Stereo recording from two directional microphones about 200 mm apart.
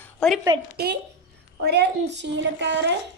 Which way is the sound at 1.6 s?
55° right (ahead or behind).